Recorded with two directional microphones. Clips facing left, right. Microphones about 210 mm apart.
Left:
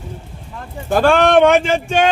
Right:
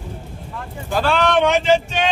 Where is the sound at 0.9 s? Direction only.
50° left (ahead or behind).